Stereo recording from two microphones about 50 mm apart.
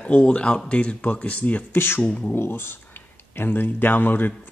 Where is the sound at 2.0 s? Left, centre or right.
Left.